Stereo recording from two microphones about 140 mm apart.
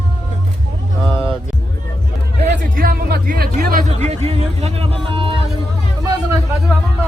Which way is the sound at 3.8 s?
50° right (ahead or behind).